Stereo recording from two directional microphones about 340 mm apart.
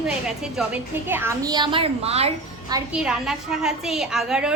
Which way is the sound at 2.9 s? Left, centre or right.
Centre.